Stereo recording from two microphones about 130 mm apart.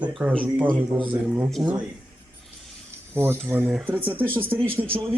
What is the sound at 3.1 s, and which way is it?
A man's voice, 20° right (ahead or behind).